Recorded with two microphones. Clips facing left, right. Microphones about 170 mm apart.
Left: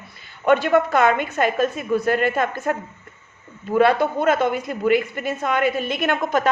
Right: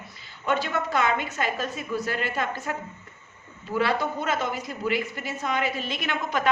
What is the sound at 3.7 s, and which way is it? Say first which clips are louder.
A woman's voice: left 8 dB; 55° left (ahead or behind).